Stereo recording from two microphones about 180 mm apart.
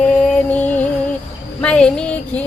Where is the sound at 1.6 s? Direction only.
5° left (ahead or behind).